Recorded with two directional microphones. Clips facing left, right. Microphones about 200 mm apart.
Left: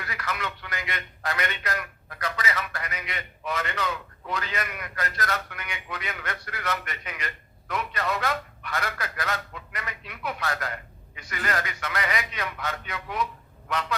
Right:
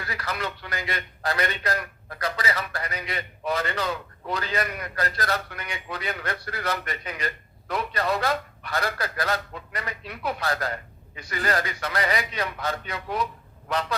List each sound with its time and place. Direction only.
0.0 s a man's voice: 35° right (ahead or behind)